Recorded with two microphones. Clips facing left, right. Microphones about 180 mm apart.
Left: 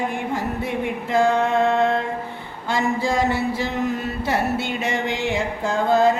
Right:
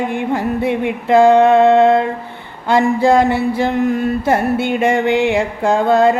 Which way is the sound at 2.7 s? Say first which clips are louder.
Right 9 dB; 60° right (ahead or behind).